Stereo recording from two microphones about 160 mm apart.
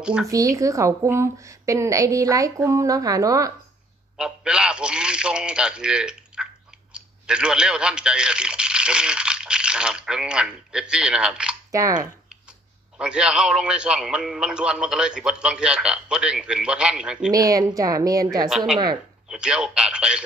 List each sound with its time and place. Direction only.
0.0 s a man's voice: 5° right (ahead or behind)
0.3 s a woman's voice: 20° right (ahead or behind)
4.2 s a man's voice: 5° right (ahead or behind)
11.7 s a woman's voice: 20° right (ahead or behind)
12.9 s a man's voice: 5° right (ahead or behind)
17.3 s a woman's voice: 20° right (ahead or behind)
19.2 s a man's voice: 5° right (ahead or behind)